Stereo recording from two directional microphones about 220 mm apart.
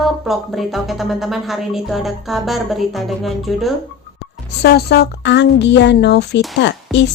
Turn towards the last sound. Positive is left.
turn(degrees=55)  # may be behind; listen again after turning